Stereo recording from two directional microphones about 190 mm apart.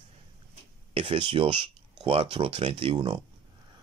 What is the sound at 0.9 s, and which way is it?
Speech, 30° right (ahead or behind).